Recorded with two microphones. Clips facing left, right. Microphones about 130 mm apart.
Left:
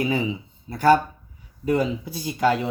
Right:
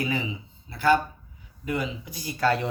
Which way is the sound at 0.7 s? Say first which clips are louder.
Left 4 dB; 40° left (ahead or behind).